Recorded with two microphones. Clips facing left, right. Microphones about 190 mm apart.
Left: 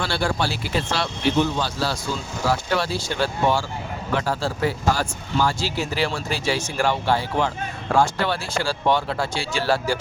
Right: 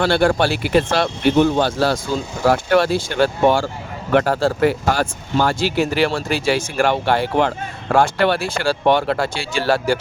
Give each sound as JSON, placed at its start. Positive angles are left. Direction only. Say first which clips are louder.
{"t": 0.0, "sound": "speech", "louder": "right 8 dB", "side_deg": -55}